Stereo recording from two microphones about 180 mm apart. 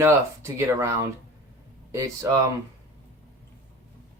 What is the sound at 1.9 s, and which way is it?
Speech, 15° right (ahead or behind).